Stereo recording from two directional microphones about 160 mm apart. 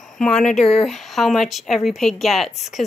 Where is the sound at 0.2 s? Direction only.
5° left (ahead or behind).